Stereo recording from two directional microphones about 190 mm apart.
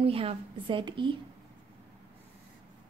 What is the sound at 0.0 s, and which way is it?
A woman's voice, 30° right (ahead or behind).